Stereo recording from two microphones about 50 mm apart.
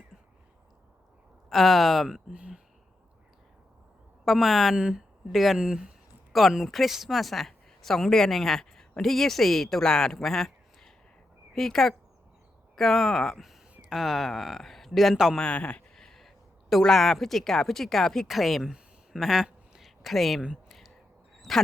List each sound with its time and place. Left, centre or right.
1.5 s speech: centre
2.3 s speech: right
4.3 s speech: centre
6.3 s speech: centre
15.4 s speech: left
16.0 s a sound: centre
16.8 s speech: centre
18.7 s a sound: centre
20.7 s whispering: centre